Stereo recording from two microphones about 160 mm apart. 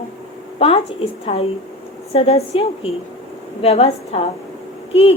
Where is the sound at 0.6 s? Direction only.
40° left (ahead or behind).